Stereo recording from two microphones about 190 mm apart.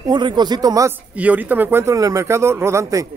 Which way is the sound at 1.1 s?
10° right (ahead or behind).